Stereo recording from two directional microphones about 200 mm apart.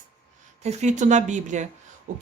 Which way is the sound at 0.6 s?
35° right (ahead or behind).